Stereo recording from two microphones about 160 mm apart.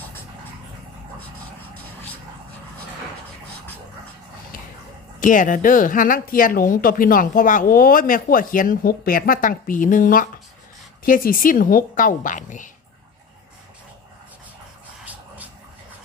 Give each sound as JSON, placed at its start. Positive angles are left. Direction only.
{"t": 5.2, "sound": "speech", "side_deg": 55}